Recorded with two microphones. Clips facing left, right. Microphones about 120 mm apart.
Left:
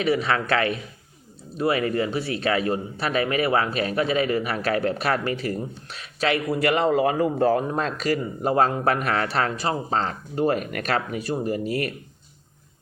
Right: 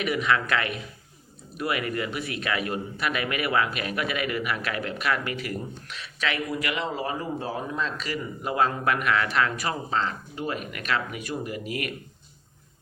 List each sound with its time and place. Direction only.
0.0 s speech: 30° left (ahead or behind); by 7.6 s 60° left (ahead or behind)
7.7 s speech: 45° left (ahead or behind)